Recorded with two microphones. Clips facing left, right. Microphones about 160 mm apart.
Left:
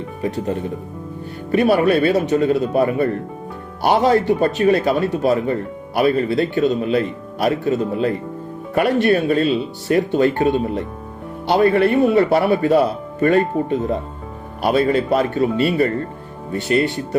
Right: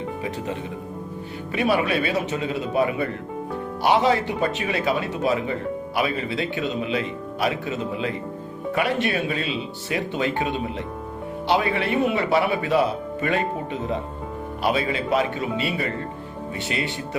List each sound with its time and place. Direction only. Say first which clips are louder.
0.2 s speech: left 6 dB; 40° left (ahead or behind)
1.5 s speech: left 7 dB; 45° left (ahead or behind)
16.5 s speech: left 10 dB; 45° left (ahead or behind)